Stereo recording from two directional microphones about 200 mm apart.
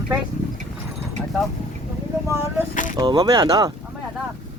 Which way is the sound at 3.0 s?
20° right (ahead or behind).